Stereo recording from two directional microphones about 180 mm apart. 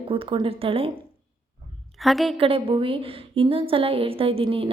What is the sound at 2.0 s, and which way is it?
Speech, centre (ahead or behind).